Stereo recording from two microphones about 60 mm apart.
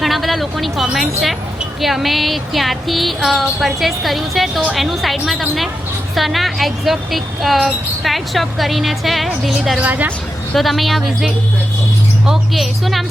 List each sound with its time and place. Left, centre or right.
0.0 s a woman's voice: centre
9.8 s speech: right
10.5 s speech: centre